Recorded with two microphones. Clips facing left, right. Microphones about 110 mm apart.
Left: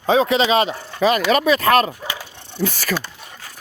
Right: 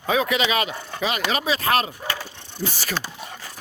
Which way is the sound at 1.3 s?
55° left (ahead or behind).